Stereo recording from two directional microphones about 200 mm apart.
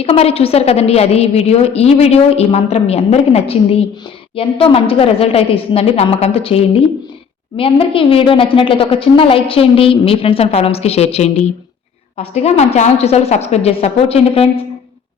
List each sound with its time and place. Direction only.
0.0 s a woman's voice: 30° left (ahead or behind)